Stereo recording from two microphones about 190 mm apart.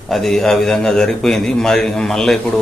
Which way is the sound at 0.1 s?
Centre (ahead or behind).